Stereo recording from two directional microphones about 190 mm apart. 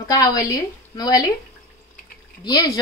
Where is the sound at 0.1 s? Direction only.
20° left (ahead or behind).